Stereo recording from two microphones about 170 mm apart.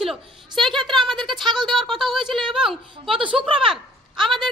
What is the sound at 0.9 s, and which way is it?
Speech, centre (ahead or behind).